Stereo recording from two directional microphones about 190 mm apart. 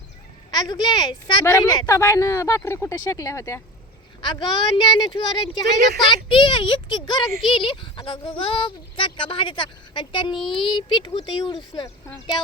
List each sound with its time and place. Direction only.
0.5 s speech: 20° left (ahead or behind)